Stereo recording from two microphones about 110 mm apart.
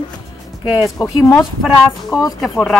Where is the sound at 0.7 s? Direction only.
35° left (ahead or behind).